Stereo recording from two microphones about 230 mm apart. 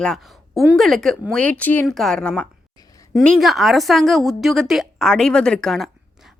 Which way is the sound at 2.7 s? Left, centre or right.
Centre.